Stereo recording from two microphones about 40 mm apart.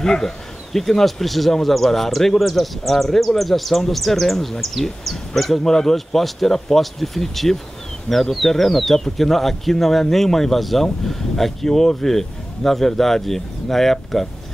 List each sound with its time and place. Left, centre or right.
0.0 s speech: centre